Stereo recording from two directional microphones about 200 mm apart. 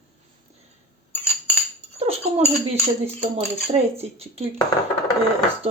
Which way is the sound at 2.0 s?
30° right (ahead or behind).